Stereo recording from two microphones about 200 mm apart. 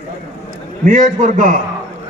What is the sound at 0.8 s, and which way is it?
Speech, 40° right (ahead or behind).